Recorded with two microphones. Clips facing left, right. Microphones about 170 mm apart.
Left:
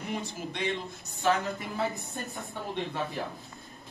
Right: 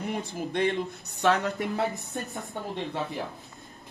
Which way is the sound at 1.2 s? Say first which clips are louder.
Right 3 dB; 75° right (ahead or behind).